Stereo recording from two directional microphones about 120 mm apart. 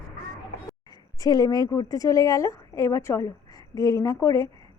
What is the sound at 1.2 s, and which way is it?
A woman's voice, 30° left (ahead or behind).